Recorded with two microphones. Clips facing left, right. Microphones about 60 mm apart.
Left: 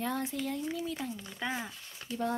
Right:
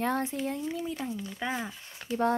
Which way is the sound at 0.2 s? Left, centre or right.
Right.